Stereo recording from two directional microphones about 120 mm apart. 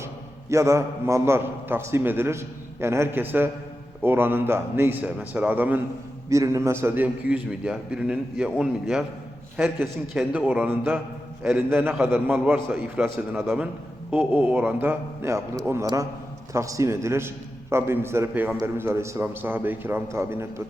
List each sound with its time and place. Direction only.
0.5 s a man's voice: 25° right (ahead or behind)
14.1 s a man's voice: 15° right (ahead or behind)